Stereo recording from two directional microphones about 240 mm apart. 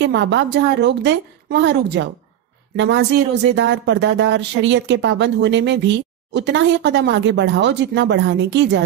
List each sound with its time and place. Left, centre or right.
0.0 s speech: right